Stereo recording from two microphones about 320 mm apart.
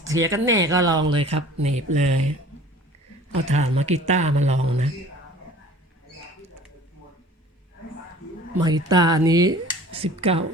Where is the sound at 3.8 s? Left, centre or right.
Right.